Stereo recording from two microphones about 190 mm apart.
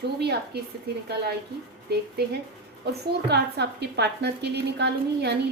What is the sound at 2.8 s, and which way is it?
A woman's voice, 60° right (ahead or behind).